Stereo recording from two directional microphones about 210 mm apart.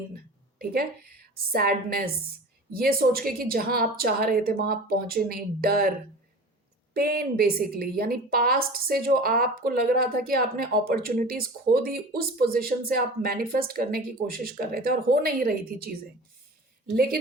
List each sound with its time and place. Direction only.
0.6 s a woman's voice: 45° right (ahead or behind)
6.9 s a woman's voice: 45° right (ahead or behind)